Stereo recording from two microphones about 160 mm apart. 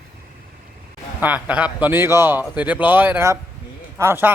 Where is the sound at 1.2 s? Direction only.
10° right (ahead or behind).